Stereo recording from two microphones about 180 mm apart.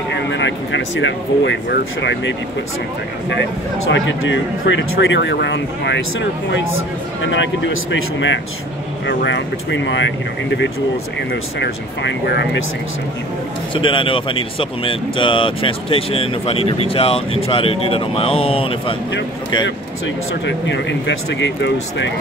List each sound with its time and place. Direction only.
0.3 s speech: 90° left
3.9 s speech: 90° left
9.0 s speech: 75° left (ahead or behind)
11.6 s speech: 75° left (ahead or behind)
13.7 s speech: 30° left (ahead or behind)
20.4 s speech: 80° left